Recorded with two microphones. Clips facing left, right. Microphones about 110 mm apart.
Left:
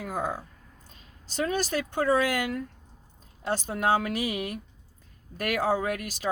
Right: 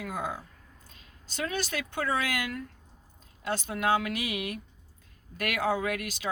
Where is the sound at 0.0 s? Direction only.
40° left (ahead or behind).